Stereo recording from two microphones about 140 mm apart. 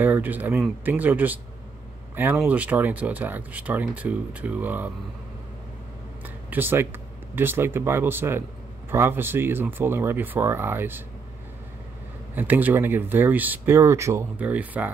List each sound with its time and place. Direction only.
0.0 s speech: 10° right (ahead or behind)
6.5 s speech: 15° right (ahead or behind)
12.4 s speech: 15° right (ahead or behind)